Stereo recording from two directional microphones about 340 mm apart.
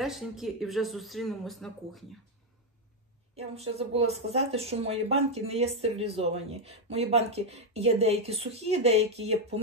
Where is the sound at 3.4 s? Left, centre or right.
Centre.